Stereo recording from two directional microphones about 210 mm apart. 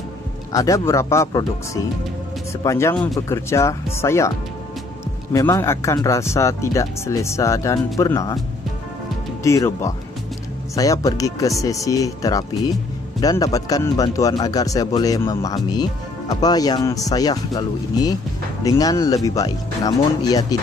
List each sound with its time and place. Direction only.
0.5 s speech: 15° left (ahead or behind)
5.3 s speech: 15° left (ahead or behind)
9.4 s speech: 15° left (ahead or behind)